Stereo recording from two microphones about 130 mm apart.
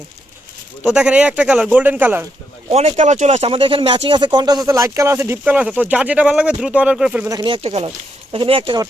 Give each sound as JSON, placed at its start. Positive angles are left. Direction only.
{"t": 0.8, "sound": "speech", "side_deg": -10}
{"t": 2.7, "sound": "speech", "side_deg": -55}
{"t": 7.3, "sound": "speech", "side_deg": -35}